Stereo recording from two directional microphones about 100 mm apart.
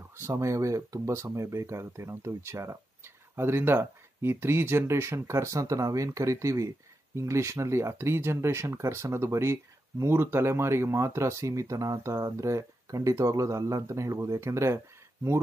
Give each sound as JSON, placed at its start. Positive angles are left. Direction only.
{"t": 0.2, "sound": "speech", "side_deg": -30}